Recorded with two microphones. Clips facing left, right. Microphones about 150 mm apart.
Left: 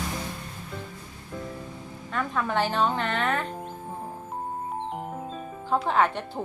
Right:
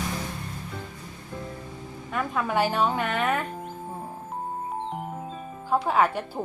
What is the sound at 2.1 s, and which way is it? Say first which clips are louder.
A woman's voice: right 1 dB; 10° right (ahead or behind).